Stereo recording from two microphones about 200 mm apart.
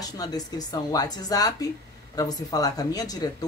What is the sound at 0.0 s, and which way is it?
A woman's voice, 20° left (ahead or behind).